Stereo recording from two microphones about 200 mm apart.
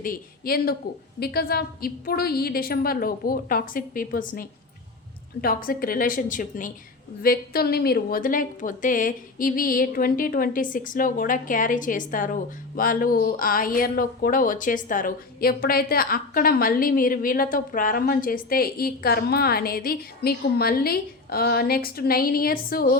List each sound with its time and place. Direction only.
0.0 s a woman's voice: 45° left (ahead or behind)